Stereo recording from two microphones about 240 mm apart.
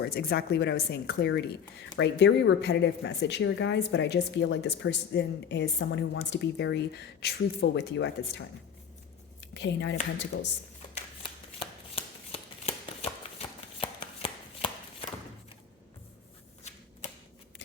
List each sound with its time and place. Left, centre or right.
0.0 s a woman's voice: left
9.6 s a woman's voice: left
10.9 s shuffling cards: left
13.7 s chopping: left